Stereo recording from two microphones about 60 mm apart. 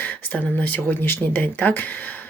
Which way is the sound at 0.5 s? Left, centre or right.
Left.